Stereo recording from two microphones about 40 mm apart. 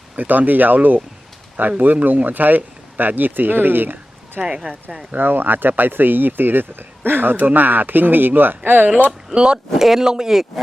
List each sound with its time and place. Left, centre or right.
0.2 s speech: right
4.4 s speech: right
5.1 s speech: right
9.3 s speech: right
9.7 s speech: centre